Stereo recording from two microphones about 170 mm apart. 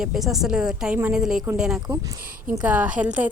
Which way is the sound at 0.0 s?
Centre (ahead or behind).